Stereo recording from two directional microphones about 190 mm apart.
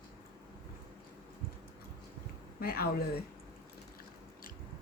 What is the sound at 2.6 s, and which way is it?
Speech, 55° left (ahead or behind).